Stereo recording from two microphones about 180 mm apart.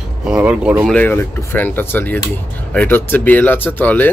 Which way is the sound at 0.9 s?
10° left (ahead or behind).